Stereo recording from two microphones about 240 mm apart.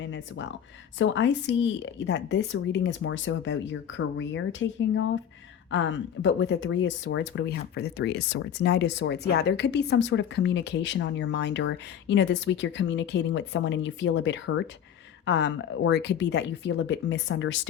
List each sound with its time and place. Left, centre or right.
0.0 s a sound: left
0.9 s speech: left
5.7 s speech: left